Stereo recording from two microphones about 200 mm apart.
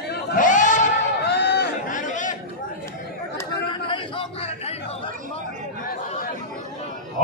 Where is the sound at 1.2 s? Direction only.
55° left (ahead or behind).